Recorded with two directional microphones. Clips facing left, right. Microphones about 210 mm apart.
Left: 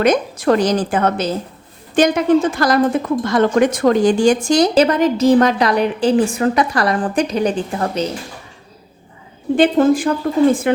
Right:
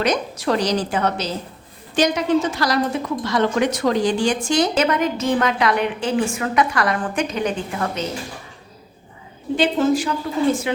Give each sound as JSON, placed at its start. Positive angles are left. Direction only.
{"t": 0.0, "sound": "a woman's voice", "side_deg": 50}
{"t": 9.6, "sound": "a woman's voice", "side_deg": 55}